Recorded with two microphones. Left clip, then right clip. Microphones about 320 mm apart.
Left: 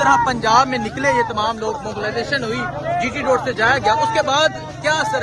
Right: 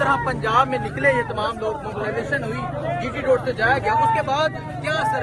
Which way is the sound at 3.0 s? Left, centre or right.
Left.